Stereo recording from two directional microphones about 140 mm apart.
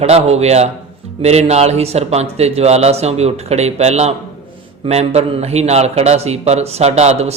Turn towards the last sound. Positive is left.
turn(degrees=-50)  # may be behind; listen again after turning